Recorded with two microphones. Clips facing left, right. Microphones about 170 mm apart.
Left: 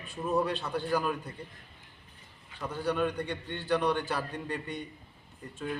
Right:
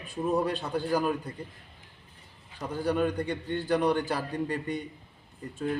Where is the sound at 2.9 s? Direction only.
40° right (ahead or behind).